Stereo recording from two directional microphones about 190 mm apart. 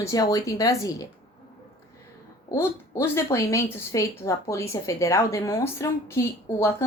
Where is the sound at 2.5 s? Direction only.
10° left (ahead or behind).